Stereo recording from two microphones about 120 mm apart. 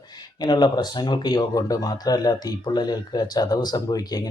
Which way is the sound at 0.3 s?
35° left (ahead or behind).